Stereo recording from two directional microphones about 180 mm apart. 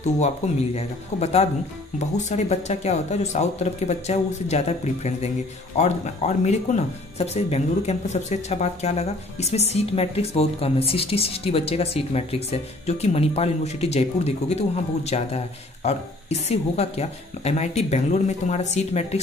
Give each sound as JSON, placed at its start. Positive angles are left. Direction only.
{"t": 0.4, "sound": "speech", "side_deg": 40}